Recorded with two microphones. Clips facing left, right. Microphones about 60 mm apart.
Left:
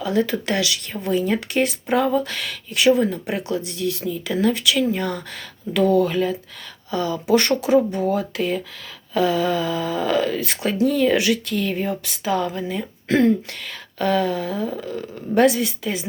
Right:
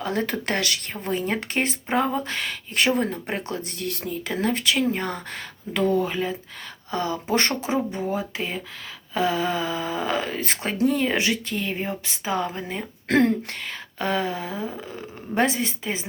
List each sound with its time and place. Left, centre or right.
0.0 s speech: right
6.9 s speech: right
13.1 s speech: right
13.5 s speech: right